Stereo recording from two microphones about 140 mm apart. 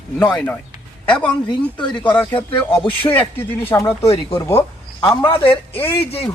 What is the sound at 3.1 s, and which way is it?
Speech, 15° left (ahead or behind).